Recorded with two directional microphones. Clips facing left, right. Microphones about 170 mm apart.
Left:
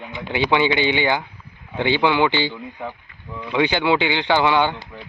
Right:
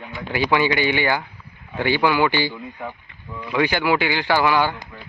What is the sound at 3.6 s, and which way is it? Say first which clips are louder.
Speech: left 1 dB; 20° left (ahead or behind).